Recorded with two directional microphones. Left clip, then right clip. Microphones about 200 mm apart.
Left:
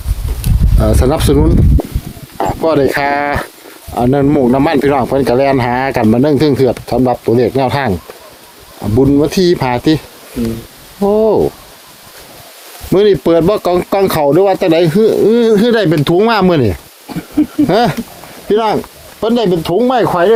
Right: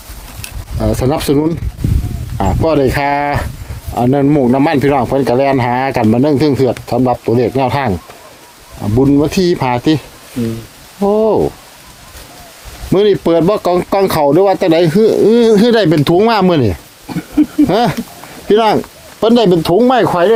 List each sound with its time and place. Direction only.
0.8 s speech: 5° left (ahead or behind)
11.0 s speech: centre (ahead or behind)
12.9 s speech: 5° left (ahead or behind)
17.3 s a sound: 5° left (ahead or behind)
18.4 s speech: 40° right (ahead or behind)
19.8 s speech: 30° right (ahead or behind)